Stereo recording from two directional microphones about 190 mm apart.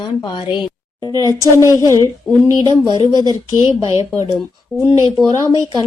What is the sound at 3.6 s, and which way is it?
Speech, 30° left (ahead or behind).